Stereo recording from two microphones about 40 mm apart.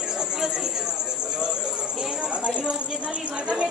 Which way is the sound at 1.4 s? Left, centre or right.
Centre.